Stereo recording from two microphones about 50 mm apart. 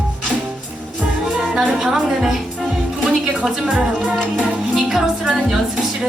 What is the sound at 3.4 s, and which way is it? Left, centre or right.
Speech, right.